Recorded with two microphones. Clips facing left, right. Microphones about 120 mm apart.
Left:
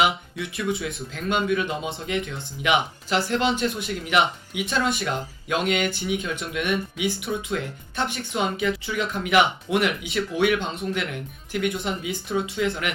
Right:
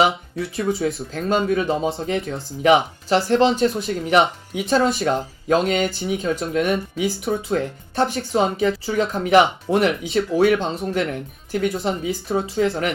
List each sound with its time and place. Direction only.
0.0 s speech: 35° right (ahead or behind)